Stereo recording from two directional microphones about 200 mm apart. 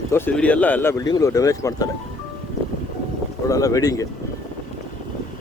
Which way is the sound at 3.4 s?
15° left (ahead or behind).